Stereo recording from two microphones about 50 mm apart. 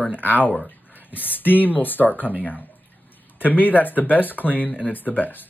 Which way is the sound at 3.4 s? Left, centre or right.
Left.